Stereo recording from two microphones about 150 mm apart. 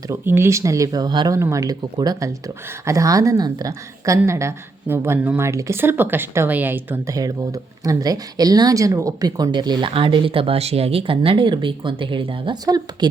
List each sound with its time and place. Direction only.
0.1 s speech: 15° right (ahead or behind)
7.2 s speech: 25° right (ahead or behind)